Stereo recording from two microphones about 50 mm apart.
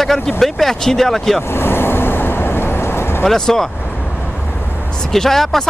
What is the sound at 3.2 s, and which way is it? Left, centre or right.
Speech, centre.